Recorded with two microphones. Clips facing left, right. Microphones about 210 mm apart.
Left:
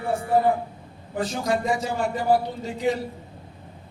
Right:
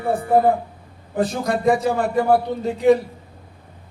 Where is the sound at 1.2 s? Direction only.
60° right (ahead or behind).